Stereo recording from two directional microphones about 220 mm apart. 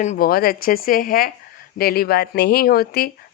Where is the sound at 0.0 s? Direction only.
35° left (ahead or behind).